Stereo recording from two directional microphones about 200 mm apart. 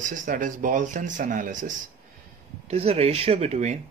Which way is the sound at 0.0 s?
40° right (ahead or behind).